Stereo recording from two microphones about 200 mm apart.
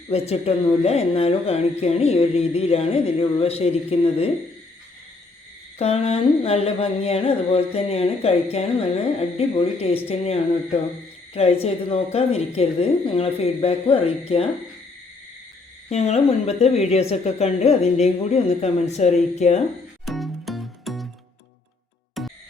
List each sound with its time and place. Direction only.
0.1 s a woman's voice: 30° left (ahead or behind)
5.8 s a sound: 30° left (ahead or behind)
9.4 s a woman's voice: 30° left (ahead or behind)
15.9 s a woman's voice: 35° left (ahead or behind)
20.1 s music: centre (ahead or behind)
22.2 s music: centre (ahead or behind)